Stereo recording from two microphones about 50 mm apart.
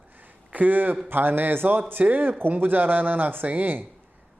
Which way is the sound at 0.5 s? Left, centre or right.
Right.